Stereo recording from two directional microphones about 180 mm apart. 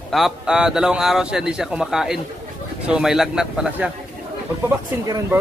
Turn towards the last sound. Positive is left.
turn(degrees=-15)  # may be behind; listen again after turning